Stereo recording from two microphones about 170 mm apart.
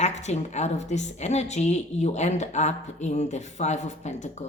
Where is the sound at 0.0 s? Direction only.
40° left (ahead or behind).